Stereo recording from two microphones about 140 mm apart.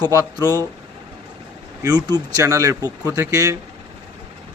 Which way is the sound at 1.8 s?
30° right (ahead or behind).